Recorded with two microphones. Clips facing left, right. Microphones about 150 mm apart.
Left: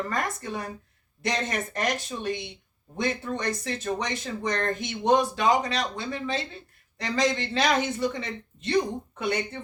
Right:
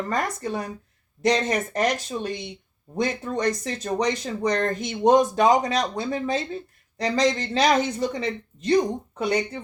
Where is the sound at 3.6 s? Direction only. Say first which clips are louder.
Right 5 dB; 40° right (ahead or behind).